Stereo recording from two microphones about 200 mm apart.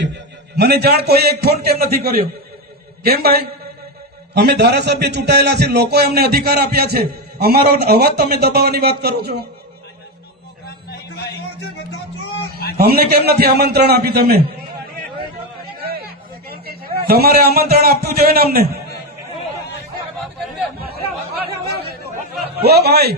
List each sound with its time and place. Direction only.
0.5 s a man's voice: 55° right (ahead or behind)
4.4 s a man's voice: 55° right (ahead or behind)
10.7 s a sound: 50° left (ahead or behind)
12.7 s a man's voice: 50° right (ahead or behind)
15.8 s chatter: 50° right (ahead or behind)
17.1 s a man's voice: 50° right (ahead or behind)
22.6 s a man's voice: 50° right (ahead or behind)